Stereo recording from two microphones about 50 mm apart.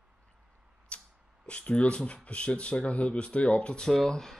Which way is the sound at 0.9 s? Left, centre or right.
Left.